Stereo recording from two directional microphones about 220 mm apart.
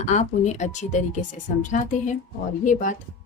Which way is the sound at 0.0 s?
30° left (ahead or behind).